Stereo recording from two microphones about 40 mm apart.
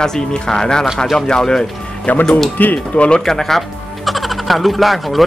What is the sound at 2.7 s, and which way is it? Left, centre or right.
Speech, left.